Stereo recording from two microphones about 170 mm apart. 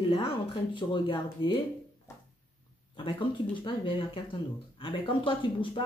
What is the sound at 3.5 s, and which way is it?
Speech, 30° left (ahead or behind).